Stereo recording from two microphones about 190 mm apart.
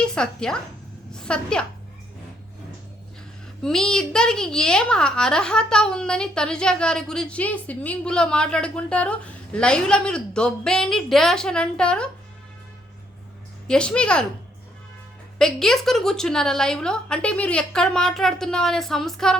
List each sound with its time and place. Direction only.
0.0 s a child's voice: 5° left (ahead or behind)
3.6 s a child's voice: 5° left (ahead or behind)
13.7 s a child's voice: 5° left (ahead or behind)
15.4 s a child's voice: centre (ahead or behind)